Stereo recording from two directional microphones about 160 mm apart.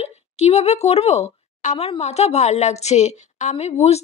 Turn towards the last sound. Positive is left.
turn(degrees=40)  # may be behind; listen again after turning